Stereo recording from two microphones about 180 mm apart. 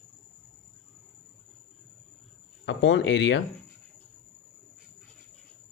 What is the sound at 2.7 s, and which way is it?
Speech, 85° left.